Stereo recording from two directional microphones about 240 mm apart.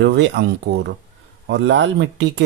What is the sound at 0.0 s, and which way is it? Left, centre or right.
Speech, right.